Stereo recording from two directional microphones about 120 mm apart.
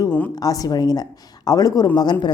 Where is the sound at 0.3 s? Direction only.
30° left (ahead or behind).